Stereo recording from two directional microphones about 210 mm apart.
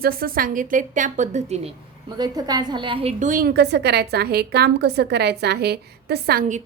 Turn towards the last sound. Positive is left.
turn(degrees=-40)  # may be behind; listen again after turning